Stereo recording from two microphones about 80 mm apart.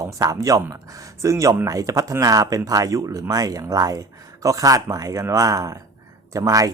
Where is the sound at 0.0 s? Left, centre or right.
Right.